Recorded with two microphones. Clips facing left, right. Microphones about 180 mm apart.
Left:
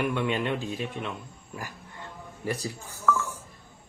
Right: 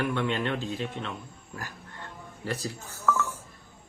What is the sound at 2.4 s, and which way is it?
Speech, 15° left (ahead or behind).